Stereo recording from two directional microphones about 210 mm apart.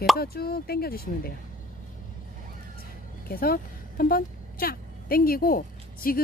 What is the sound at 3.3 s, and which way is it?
Speech, 45° left (ahead or behind).